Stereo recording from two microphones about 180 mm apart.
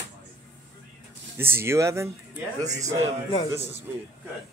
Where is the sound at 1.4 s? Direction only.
15° right (ahead or behind).